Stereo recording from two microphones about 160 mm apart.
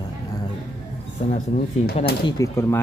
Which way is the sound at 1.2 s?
40° left (ahead or behind).